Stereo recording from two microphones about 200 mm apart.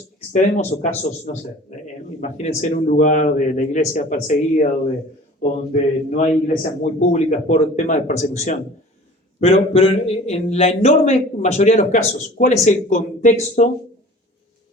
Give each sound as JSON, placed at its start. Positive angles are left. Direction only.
{"t": 0.3, "sound": "speech", "side_deg": 35}